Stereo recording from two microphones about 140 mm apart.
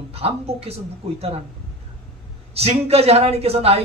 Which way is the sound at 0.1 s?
45° right (ahead or behind).